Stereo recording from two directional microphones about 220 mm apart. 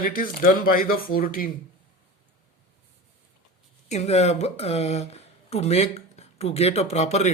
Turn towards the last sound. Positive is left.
turn(degrees=30)  # may be behind; listen again after turning